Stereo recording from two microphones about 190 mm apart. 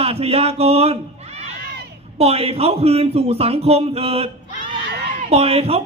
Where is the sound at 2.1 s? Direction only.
30° right (ahead or behind).